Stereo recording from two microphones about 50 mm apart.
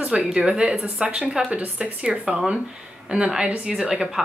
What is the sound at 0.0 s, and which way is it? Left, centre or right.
Speech, right.